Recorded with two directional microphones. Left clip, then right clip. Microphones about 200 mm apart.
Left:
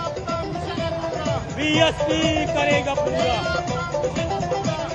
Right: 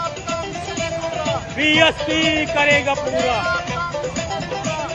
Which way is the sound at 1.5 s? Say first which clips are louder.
Right 4 dB; 35° right (ahead or behind).